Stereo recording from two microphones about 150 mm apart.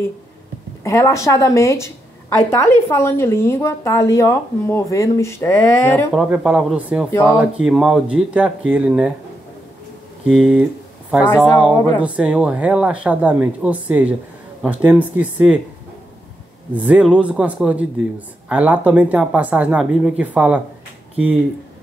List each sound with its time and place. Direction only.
0.8 s a woman's voice: 20° left (ahead or behind)
6.1 s speech: 5° right (ahead or behind)
10.2 s speech: 5° right (ahead or behind)
16.7 s speech: 10° right (ahead or behind)